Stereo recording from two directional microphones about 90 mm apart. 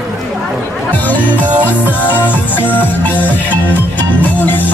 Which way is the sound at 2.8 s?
20° left (ahead or behind).